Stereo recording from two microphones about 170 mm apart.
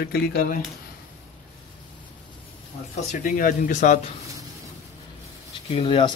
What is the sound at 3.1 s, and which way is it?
Speech, 50° left (ahead or behind).